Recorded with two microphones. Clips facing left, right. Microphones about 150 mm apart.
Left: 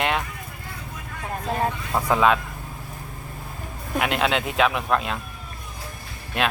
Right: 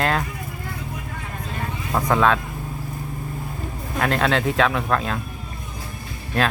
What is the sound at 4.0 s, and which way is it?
Speech, 5° left (ahead or behind).